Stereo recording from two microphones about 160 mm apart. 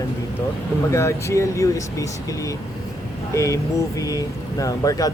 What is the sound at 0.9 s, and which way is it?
Speech, 15° left (ahead or behind).